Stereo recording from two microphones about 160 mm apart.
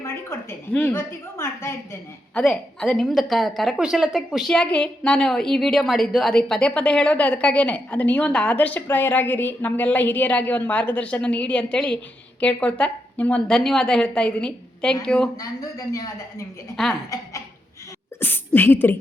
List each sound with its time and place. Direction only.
0.0 s a woman's voice: 15° left (ahead or behind)
2.3 s a woman's voice: centre (ahead or behind)
16.7 s a woman's voice: centre (ahead or behind)
18.2 s a woman's voice: 10° left (ahead or behind)